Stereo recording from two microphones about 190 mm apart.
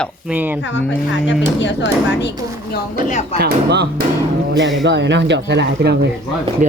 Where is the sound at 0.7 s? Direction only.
70° left (ahead or behind).